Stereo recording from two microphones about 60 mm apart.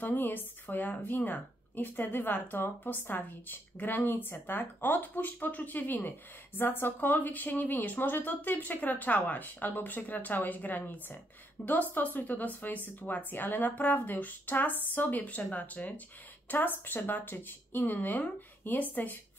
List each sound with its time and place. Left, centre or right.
0.0 s speech: left